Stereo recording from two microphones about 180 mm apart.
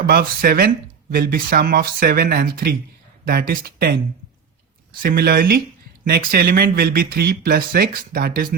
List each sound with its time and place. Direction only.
0.1 s speech: 55° right (ahead or behind)
5.0 s speech: 55° right (ahead or behind)